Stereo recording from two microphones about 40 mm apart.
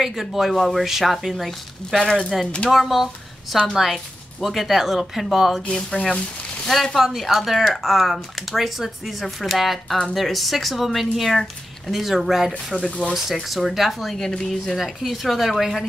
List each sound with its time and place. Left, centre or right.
0.0 s speech: centre
2.4 s speech: left
2.7 s speech: centre
5.9 s speech: left
6.7 s speech: centre
14.1 s a woman's voice: centre
14.8 s speech: centre